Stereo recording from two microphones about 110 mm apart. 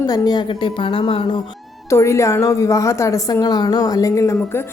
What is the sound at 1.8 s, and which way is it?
A woman's voice, 25° left (ahead or behind).